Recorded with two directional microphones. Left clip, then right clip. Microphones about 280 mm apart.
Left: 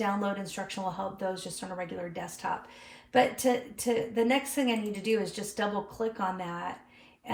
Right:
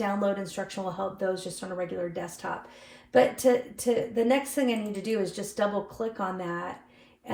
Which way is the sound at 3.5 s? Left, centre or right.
Centre.